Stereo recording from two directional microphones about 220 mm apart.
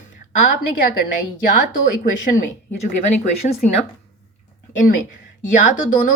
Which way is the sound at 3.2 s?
30° left (ahead or behind).